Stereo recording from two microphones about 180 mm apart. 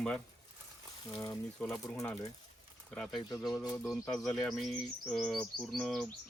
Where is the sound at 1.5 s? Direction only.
5° left (ahead or behind).